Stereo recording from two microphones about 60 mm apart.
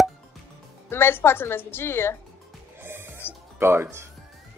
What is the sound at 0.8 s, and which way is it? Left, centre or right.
A woman's voice, left.